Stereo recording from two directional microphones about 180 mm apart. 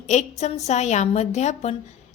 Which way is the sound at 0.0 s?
40° left (ahead or behind).